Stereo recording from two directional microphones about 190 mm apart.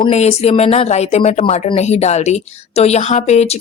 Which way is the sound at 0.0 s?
35° left (ahead or behind).